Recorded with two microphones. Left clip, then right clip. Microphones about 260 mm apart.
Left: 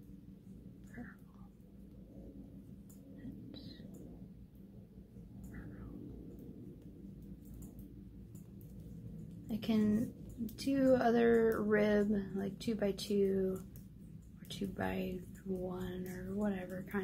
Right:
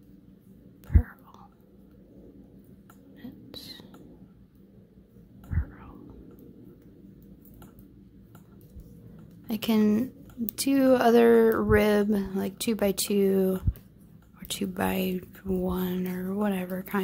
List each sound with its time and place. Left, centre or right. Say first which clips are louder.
9.5 s a woman's voice: right 10 dB; right
14.5 s speech: right 10 dB; right